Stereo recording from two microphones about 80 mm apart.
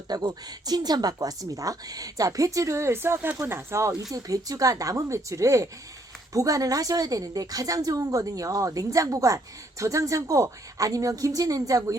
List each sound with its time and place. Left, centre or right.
0.1 s a woman's voice: right